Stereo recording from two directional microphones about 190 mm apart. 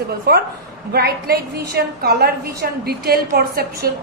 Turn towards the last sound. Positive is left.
turn(degrees=-55)  # may be behind; listen again after turning